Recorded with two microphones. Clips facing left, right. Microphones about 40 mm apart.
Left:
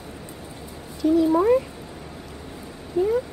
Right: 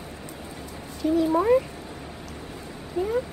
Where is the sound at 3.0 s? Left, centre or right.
Right.